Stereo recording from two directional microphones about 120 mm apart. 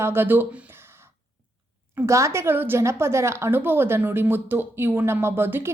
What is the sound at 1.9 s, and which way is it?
A woman's voice, 25° right (ahead or behind).